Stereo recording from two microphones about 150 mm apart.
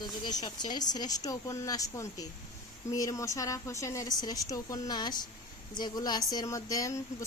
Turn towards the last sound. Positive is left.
turn(degrees=20)  # may be behind; listen again after turning